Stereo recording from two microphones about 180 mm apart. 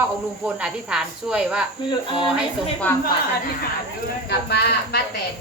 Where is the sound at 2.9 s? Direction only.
10° left (ahead or behind).